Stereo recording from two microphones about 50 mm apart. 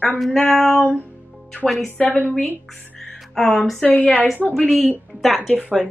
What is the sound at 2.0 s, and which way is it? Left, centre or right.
Speech, centre.